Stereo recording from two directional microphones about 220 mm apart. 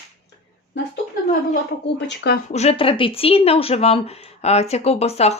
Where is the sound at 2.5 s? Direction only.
30° left (ahead or behind).